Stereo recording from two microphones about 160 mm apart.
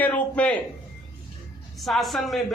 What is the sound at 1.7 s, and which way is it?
Speech, centre (ahead or behind).